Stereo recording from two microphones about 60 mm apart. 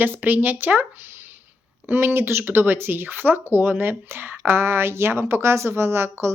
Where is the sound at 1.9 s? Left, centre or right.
Right.